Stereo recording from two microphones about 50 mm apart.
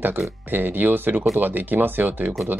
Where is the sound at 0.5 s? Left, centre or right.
Right.